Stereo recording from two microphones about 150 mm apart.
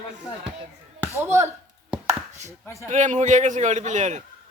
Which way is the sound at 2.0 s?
50° right (ahead or behind).